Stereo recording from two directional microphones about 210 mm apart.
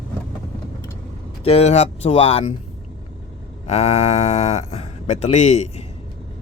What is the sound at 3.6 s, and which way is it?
Speech, 30° left (ahead or behind).